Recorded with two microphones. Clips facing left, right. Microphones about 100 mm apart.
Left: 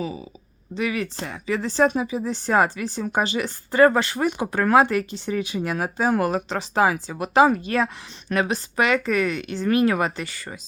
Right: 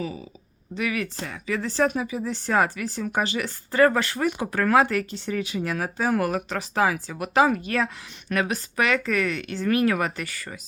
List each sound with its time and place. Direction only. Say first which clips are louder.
0.7 s speech: left 2 dB; 25° left (ahead or behind)